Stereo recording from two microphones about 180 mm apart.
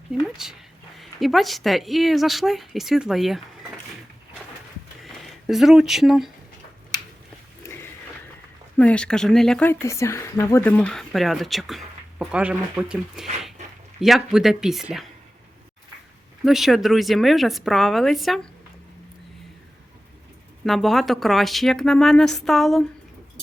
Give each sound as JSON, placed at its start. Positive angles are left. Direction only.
{"t": 0.4, "sound": "speech", "side_deg": -5}
{"t": 5.0, "sound": "speech", "side_deg": 0}
{"t": 7.6, "sound": "a sound", "side_deg": 15}
{"t": 8.8, "sound": "speech", "side_deg": 5}
{"t": 13.6, "sound": "a sound", "side_deg": -40}
{"t": 14.0, "sound": "speech", "side_deg": 0}
{"t": 16.4, "sound": "speech", "side_deg": 0}
{"t": 20.7, "sound": "speech", "side_deg": 0}